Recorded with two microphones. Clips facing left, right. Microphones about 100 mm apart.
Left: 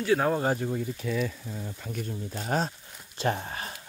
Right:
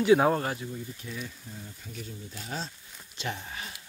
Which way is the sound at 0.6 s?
75° left (ahead or behind).